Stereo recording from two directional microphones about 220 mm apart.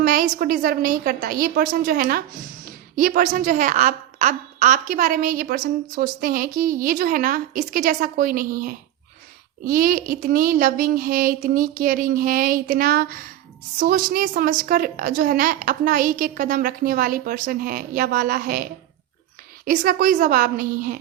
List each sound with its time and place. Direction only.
0.0 s a woman's voice: 40° right (ahead or behind)